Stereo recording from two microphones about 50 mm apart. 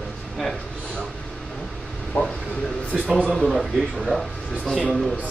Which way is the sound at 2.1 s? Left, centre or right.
Left.